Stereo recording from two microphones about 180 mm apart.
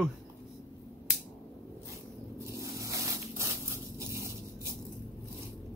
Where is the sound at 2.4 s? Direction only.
15° right (ahead or behind).